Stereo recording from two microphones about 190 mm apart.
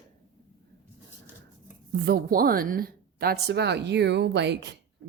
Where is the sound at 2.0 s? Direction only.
55° right (ahead or behind).